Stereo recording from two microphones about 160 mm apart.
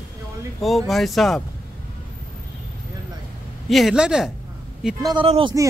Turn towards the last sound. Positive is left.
turn(degrees=-35)  # may be behind; listen again after turning